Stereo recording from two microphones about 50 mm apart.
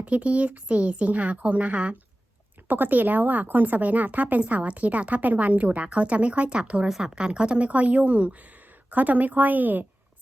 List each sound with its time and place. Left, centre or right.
0.0 s a woman's voice: right
2.6 s a woman's voice: right